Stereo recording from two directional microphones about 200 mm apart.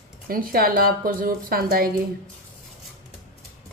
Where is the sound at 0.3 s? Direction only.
45° right (ahead or behind).